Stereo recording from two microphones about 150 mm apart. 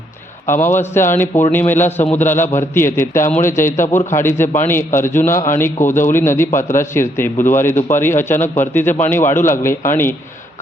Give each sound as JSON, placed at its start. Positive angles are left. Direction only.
{"t": 0.7, "sound": "a man's voice", "side_deg": 15}